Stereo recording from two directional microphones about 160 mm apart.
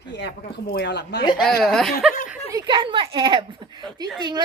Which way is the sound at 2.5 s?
30° right (ahead or behind).